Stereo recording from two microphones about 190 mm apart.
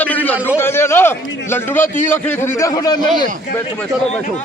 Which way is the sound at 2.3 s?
15° left (ahead or behind).